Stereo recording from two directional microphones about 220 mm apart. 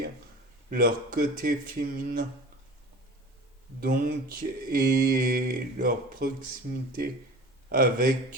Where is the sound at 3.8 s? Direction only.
40° right (ahead or behind).